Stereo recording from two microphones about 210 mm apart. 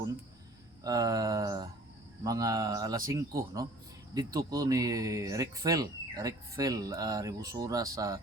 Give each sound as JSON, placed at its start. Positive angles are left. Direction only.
{"t": 0.9, "sound": "speech", "side_deg": -15}